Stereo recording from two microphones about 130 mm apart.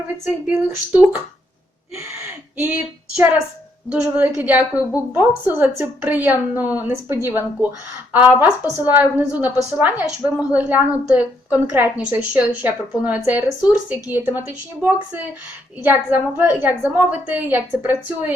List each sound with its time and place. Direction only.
0.5 s a woman's voice: 15° right (ahead or behind)
4.0 s a woman's voice: 15° right (ahead or behind)